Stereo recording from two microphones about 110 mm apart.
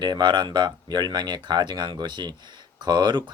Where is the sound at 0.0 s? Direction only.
40° right (ahead or behind).